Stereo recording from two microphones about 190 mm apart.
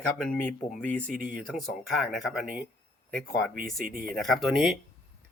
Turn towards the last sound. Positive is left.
turn(degrees=0)  # may be behind; listen again after turning